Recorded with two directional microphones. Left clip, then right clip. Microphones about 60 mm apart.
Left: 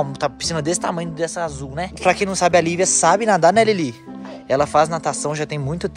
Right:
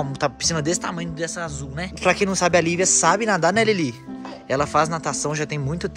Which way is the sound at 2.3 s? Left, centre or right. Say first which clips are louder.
Left 3 dB; right.